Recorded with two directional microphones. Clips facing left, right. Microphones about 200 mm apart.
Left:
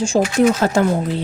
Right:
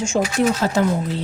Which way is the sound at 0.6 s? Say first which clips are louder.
Left 3 dB; 60° left (ahead or behind).